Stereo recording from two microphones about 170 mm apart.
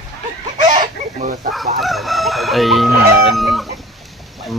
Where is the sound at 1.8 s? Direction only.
Centre (ahead or behind).